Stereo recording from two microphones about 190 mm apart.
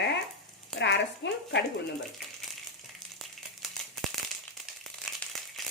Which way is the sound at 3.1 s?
Centre (ahead or behind).